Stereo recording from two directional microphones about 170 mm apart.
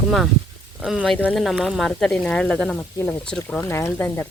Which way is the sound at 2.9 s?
15° left (ahead or behind).